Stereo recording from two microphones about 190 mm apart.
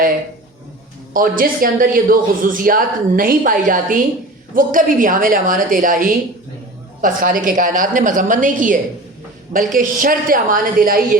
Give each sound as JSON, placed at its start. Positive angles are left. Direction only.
{"t": 1.1, "sound": "speech", "side_deg": -45}